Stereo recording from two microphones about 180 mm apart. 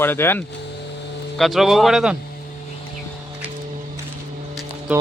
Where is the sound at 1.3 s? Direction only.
Centre (ahead or behind).